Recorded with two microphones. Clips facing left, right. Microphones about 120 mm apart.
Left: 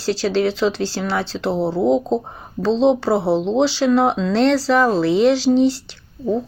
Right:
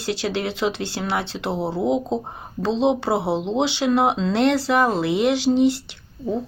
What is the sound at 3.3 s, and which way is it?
Speech, 25° left (ahead or behind).